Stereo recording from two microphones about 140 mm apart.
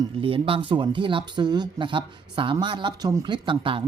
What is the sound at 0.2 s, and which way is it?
Speech, 40° right (ahead or behind).